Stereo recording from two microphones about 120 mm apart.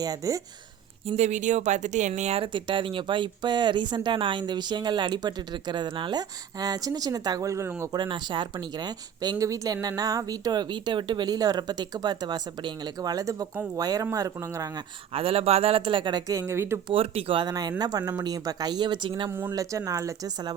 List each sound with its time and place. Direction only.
0.0 s speech: 30° right (ahead or behind)
1.0 s speech: 70° right (ahead or behind)
2.4 s speech: 45° right (ahead or behind); by 7.7 s 25° right (ahead or behind)
7.9 s speech: 40° right (ahead or behind)
15.1 s speech: 50° right (ahead or behind)
16.2 s speech: 25° right (ahead or behind)
16.9 s speech: 50° right (ahead or behind)
17.4 s speech: 35° right (ahead or behind)
19.3 s speech: 15° right (ahead or behind)
19.5 s speech: 30° right (ahead or behind)